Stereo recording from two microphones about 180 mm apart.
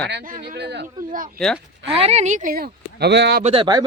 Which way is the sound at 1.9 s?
35° right (ahead or behind).